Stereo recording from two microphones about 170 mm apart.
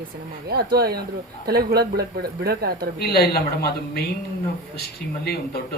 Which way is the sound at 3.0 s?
65° left (ahead or behind).